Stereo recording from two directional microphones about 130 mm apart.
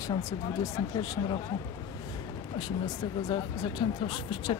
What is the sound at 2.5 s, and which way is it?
Speech, 35° left (ahead or behind).